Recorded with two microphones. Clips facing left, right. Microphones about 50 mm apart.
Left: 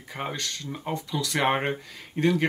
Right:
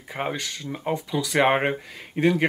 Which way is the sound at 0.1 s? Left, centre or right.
Centre.